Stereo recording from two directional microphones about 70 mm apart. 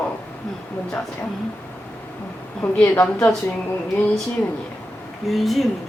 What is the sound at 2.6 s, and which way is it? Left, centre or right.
Speech, left.